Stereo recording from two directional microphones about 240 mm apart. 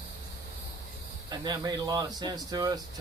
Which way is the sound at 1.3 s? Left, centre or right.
Centre.